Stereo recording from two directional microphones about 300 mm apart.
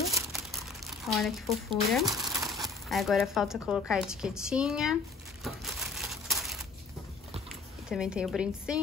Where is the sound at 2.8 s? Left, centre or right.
Centre.